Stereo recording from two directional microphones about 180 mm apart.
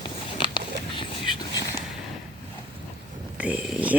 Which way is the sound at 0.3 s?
25° left (ahead or behind).